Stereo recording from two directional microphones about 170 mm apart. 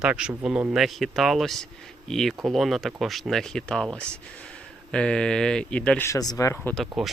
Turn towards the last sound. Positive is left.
turn(degrees=10)  # may be behind; listen again after turning